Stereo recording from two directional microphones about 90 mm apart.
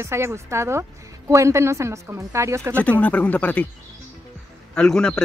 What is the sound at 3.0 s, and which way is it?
Speech, 15° left (ahead or behind).